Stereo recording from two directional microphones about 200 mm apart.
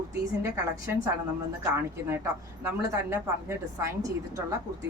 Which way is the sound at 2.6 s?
15° right (ahead or behind).